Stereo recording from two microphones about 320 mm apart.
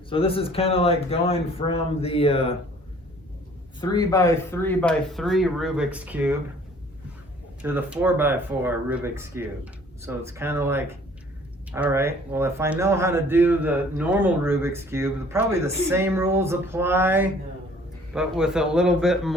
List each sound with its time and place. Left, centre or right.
0.1 s speech: centre
3.8 s speech: centre
7.6 s speech: centre